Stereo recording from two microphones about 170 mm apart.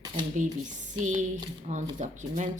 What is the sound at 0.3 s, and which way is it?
Speech, 50° right (ahead or behind).